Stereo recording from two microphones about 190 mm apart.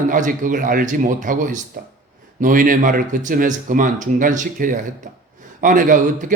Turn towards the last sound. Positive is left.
turn(degrees=-45)  # may be behind; listen again after turning